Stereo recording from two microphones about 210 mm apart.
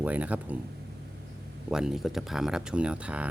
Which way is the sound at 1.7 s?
Centre (ahead or behind).